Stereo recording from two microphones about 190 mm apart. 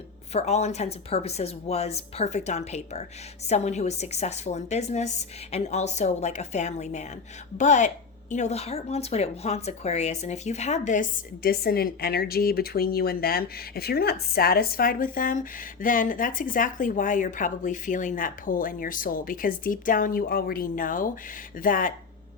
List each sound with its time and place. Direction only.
0.3 s a woman's voice: 35° left (ahead or behind)
11.4 s a woman's voice: 55° left (ahead or behind)